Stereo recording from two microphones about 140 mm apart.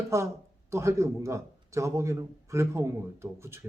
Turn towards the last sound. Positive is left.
turn(degrees=-20)  # may be behind; listen again after turning